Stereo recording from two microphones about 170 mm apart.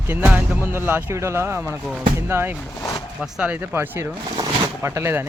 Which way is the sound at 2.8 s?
20° left (ahead or behind).